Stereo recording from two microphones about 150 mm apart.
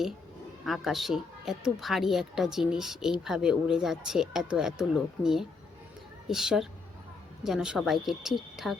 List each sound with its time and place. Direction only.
0.6 s speech: centre (ahead or behind)